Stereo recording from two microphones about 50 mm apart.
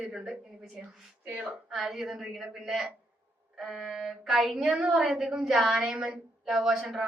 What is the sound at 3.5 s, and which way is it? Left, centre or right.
Music, centre.